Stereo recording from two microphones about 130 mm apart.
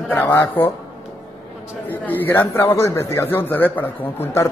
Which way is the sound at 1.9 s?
15° left (ahead or behind).